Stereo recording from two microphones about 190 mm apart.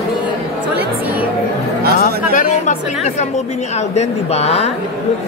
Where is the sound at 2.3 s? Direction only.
40° left (ahead or behind).